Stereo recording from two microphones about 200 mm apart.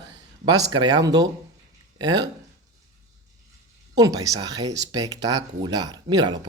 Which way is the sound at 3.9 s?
15° right (ahead or behind).